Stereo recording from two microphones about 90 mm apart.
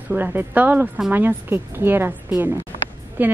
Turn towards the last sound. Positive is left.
turn(degrees=-20)  # may be behind; listen again after turning